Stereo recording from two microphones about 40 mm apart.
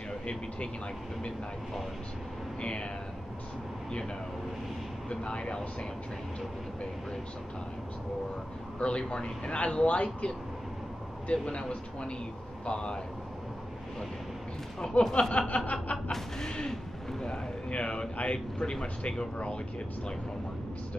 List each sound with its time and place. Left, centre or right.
2.6 s speech: left
5.1 s speech: left
8.7 s speech: left
11.3 s speech: left
14.8 s speech: left
16.1 s a sound: centre
17.6 s speech: left